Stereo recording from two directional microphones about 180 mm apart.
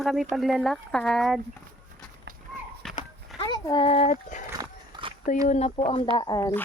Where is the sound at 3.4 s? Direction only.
25° left (ahead or behind); by 4.4 s 45° left (ahead or behind).